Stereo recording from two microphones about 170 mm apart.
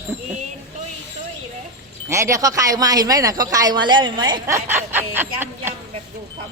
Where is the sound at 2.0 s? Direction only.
15° right (ahead or behind).